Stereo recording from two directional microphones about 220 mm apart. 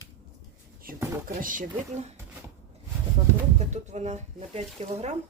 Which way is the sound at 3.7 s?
30° right (ahead or behind).